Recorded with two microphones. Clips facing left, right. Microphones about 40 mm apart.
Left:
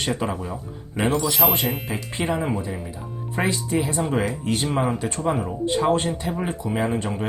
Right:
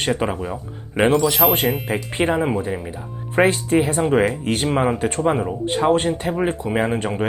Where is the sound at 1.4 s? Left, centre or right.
Right.